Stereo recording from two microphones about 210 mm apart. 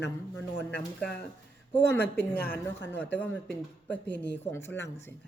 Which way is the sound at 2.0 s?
50° left (ahead or behind).